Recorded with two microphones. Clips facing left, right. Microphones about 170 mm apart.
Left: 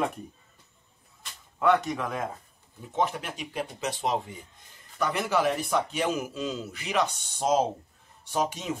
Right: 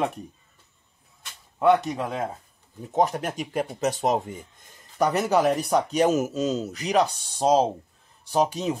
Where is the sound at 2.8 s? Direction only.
40° right (ahead or behind).